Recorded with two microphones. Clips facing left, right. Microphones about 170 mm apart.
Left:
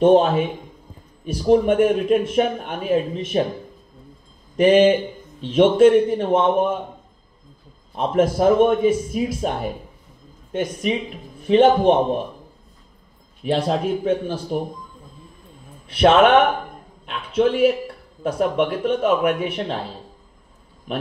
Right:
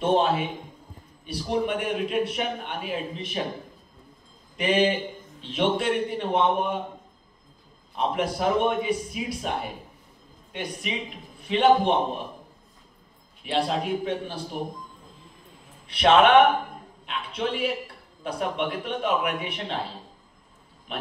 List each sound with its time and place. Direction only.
0.0 s a man's voice: 40° left (ahead or behind)
4.6 s a man's voice: 40° left (ahead or behind)
7.9 s a man's voice: 40° left (ahead or behind)
10.5 s a man's voice: 40° left (ahead or behind)
13.4 s a man's voice: 40° left (ahead or behind)
15.9 s a man's voice: 45° left (ahead or behind)
17.4 s a man's voice: 45° left (ahead or behind)